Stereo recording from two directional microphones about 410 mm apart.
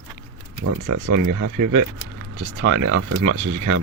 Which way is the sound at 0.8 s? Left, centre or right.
Right.